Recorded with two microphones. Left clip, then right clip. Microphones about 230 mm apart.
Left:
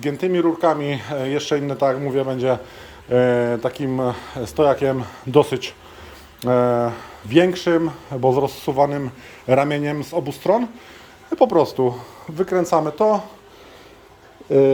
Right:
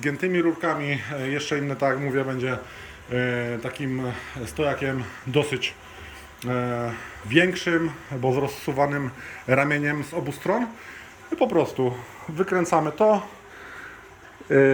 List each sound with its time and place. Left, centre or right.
0.1 s speech: centre